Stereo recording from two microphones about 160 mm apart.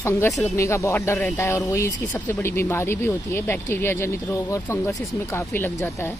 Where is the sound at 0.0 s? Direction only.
15° left (ahead or behind).